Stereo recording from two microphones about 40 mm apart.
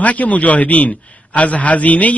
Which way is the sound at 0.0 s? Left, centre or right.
Left.